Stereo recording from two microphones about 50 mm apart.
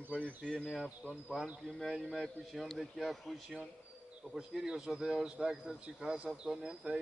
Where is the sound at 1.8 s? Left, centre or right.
Centre.